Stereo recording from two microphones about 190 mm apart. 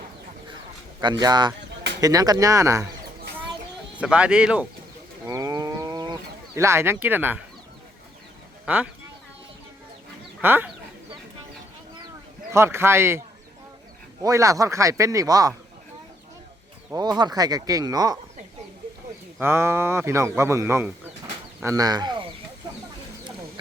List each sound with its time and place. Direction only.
1.0 s speech: 20° right (ahead or behind)
3.9 s speech: 5° right (ahead or behind)
5.2 s livestock: 20° right (ahead or behind)
6.6 s a man's voice: 15° right (ahead or behind)
8.6 s speech: 5° right (ahead or behind)
10.4 s a man's voice: 10° right (ahead or behind)
12.5 s a man's voice: 15° right (ahead or behind)
16.9 s speech: 20° right (ahead or behind)
19.4 s a man's voice: 15° right (ahead or behind)